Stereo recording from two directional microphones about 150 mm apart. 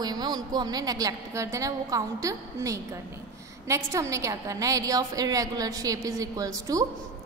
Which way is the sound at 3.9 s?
20° right (ahead or behind).